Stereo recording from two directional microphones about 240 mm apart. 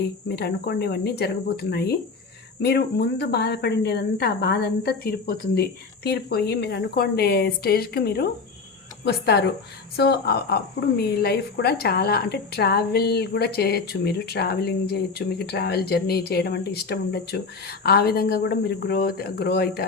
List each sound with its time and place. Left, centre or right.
0.3 s speech: left